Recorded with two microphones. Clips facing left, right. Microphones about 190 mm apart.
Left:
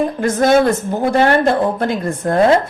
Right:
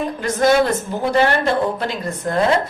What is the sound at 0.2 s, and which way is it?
Speech, 50° left (ahead or behind).